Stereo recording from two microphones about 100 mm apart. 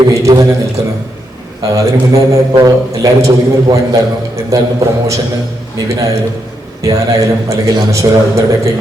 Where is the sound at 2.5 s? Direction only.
40° right (ahead or behind).